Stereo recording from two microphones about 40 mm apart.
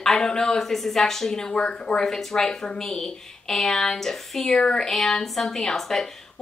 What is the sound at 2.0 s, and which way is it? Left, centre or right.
Speech, centre.